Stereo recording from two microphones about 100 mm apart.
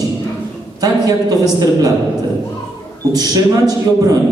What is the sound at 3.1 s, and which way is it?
A man's voice, 40° right (ahead or behind).